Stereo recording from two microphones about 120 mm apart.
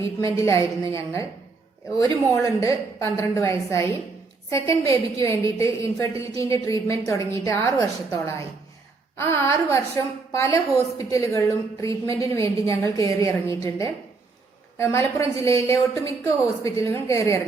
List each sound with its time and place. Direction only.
0.0 s a woman's voice: 25° left (ahead or behind)
2.3 s a woman's voice: 25° left (ahead or behind)